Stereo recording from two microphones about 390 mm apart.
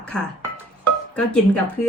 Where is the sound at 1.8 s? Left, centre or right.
Centre.